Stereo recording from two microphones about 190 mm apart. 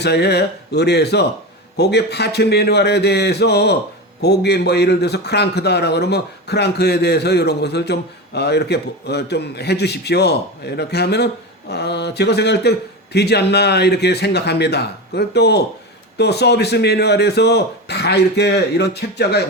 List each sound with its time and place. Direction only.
0.0 s a man's voice: 60° left (ahead or behind)